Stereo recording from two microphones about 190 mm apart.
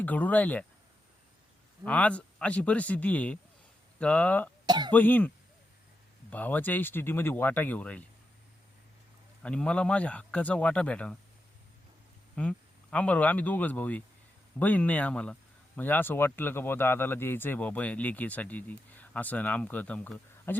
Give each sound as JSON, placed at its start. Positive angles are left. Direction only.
{"t": 0.0, "sound": "speech", "side_deg": 10}
{"t": 1.8, "sound": "speech", "side_deg": 5}
{"t": 4.6, "sound": "speech", "side_deg": -20}
{"t": 4.9, "sound": "speech", "side_deg": 10}
{"t": 6.3, "sound": "speech", "side_deg": 10}
{"t": 9.4, "sound": "speech", "side_deg": 5}
{"t": 12.4, "sound": "speech", "side_deg": 5}